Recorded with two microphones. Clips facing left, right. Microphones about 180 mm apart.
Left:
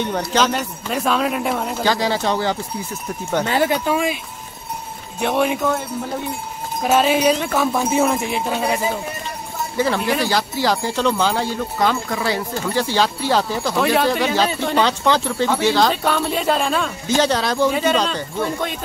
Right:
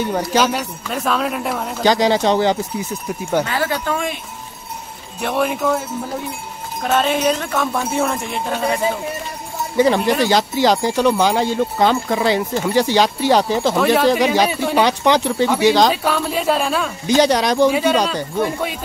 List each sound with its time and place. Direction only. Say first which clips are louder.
0.0 s speech: right 2 dB; 10° right (ahead or behind)
1.9 s speech: right 6 dB; 20° right (ahead or behind)
3.4 s speech: left 3 dB; 25° left (ahead or behind)
3.7 s speech: left 2 dB; 10° left (ahead or behind)
5.2 s speech: even; centre (ahead or behind)
6.8 s speech: left 1 dB; 5° left (ahead or behind)
9.8 s speech: right 5 dB; 20° right (ahead or behind)
13.7 s speech: right 1 dB; centre (ahead or behind)
14.0 s speech: right 3 dB; 15° right (ahead or behind)
15.9 s speech: right 1 dB; 5° right (ahead or behind)
17.2 s speech: right 4 dB; 15° right (ahead or behind)